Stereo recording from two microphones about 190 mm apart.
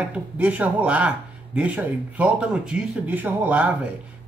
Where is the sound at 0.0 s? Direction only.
5° right (ahead or behind).